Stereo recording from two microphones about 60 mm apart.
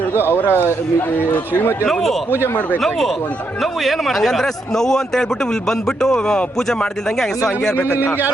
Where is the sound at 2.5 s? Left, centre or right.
Left.